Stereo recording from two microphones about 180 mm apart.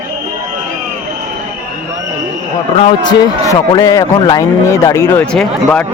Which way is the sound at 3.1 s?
20° left (ahead or behind).